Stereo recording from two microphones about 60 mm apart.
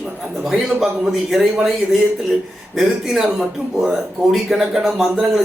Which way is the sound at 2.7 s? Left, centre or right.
Centre.